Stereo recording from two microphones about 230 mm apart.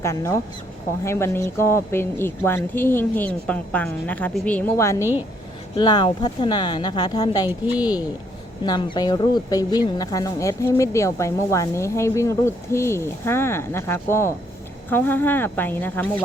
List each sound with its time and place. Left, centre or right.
0.0 s a woman's voice: centre
8.6 s a woman's voice: centre